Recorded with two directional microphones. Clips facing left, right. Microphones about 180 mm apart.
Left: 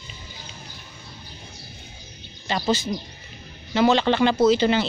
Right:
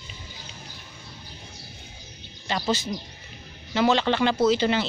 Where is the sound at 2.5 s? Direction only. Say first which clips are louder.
Left 3 dB; 30° left (ahead or behind).